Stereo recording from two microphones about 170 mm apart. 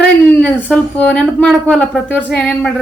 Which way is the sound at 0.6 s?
10° left (ahead or behind).